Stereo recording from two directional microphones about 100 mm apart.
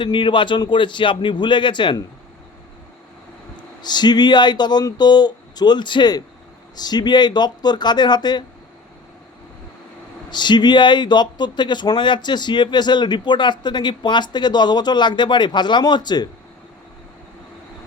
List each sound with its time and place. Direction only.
0.0 s speech: 55° left (ahead or behind)
3.8 s speech: 45° left (ahead or behind)
10.2 s speech: 50° left (ahead or behind)